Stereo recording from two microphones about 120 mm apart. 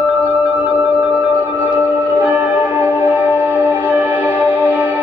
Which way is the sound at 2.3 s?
15° right (ahead or behind).